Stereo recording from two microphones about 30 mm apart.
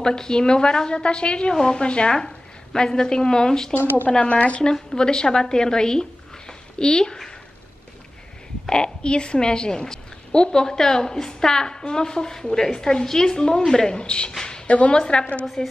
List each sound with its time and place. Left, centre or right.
0.0 s a woman's voice: left
1.5 s a woman's voice: left
2.1 s a woman's voice: left
3.7 s speech: left
4.3 s speech: left
4.9 s a woman's voice: left
8.6 s a woman's voice: left
13.9 s speech: left
14.7 s speech: left
15.0 s a woman's voice: left